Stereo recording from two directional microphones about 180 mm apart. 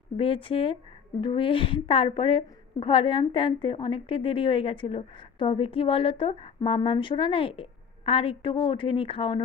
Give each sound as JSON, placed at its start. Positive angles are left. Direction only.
{"t": 0.2, "sound": "a woman's voice", "side_deg": 30}